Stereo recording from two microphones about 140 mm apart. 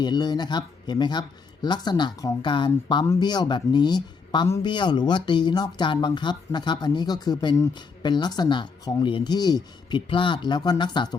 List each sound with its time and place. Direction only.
0.0 s speech: 30° left (ahead or behind)